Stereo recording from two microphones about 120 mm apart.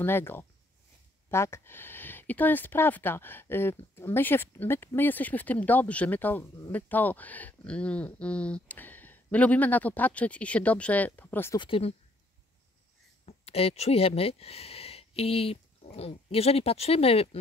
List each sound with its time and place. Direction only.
0.0 s speech: 20° left (ahead or behind)
11.5 s speech: 40° left (ahead or behind)
13.2 s speech: 60° left (ahead or behind)